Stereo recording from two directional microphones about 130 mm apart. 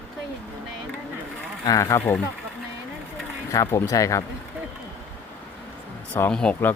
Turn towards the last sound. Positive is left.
turn(degrees=5)  # may be behind; listen again after turning